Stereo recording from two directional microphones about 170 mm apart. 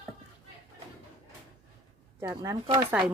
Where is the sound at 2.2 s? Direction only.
20° right (ahead or behind).